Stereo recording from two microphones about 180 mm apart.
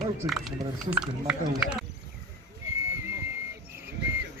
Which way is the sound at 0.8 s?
5° right (ahead or behind).